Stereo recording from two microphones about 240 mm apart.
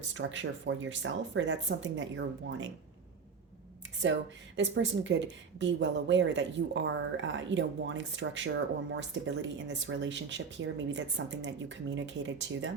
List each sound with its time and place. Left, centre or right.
0.1 s a woman's voice: right
4.0 s a woman's voice: right